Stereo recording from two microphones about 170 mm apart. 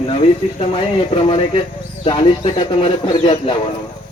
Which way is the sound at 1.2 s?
30° left (ahead or behind).